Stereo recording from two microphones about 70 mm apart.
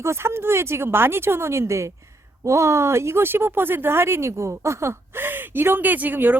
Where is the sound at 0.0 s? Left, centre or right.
Right.